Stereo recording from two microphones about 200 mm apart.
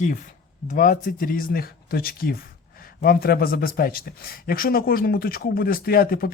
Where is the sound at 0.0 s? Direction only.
40° left (ahead or behind).